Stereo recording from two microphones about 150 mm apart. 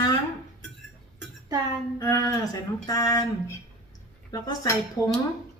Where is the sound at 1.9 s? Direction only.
20° left (ahead or behind).